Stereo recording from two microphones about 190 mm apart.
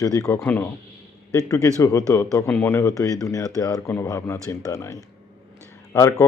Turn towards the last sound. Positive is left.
turn(degrees=15)  # may be behind; listen again after turning